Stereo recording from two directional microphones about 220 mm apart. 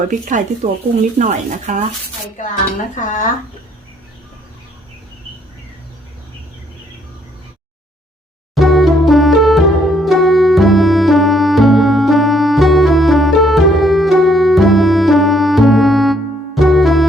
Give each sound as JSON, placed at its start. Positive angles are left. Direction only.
{"t": 0.1, "sound": "speech", "side_deg": -35}
{"t": 2.9, "sound": "speech", "side_deg": 35}
{"t": 8.5, "sound": "music", "side_deg": 0}